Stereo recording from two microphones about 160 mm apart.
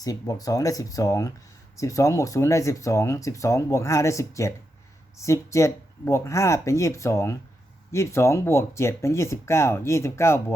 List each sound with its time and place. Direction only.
0.0 s speech: 20° left (ahead or behind)